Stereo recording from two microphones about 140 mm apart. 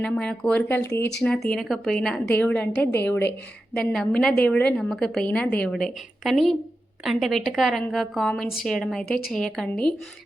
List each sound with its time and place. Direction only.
0.0 s a woman's voice: 5° left (ahead or behind)
0.8 s speech: 20° left (ahead or behind)
1.2 s a woman's voice: 5° left (ahead or behind)